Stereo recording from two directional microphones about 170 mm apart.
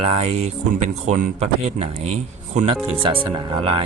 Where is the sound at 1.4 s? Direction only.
40° right (ahead or behind).